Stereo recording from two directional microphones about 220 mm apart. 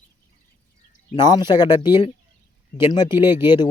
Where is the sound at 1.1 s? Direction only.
20° left (ahead or behind).